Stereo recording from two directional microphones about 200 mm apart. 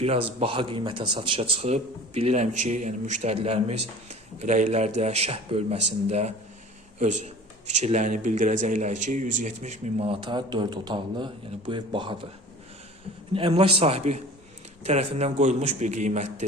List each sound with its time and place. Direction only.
0.0 s a man's voice: 30° right (ahead or behind)
13.3 s a man's voice: 30° right (ahead or behind)